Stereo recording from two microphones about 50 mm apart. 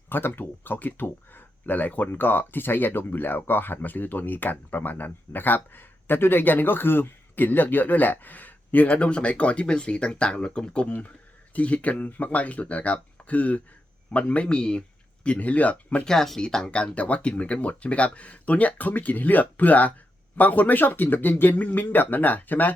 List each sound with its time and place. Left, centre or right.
0.1 s speech: left
16.0 s speech: centre
16.8 s speech: left